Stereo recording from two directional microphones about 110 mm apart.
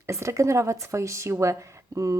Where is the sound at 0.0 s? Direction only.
25° right (ahead or behind).